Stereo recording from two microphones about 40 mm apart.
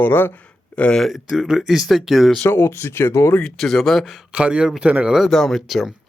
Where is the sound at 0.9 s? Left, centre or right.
Centre.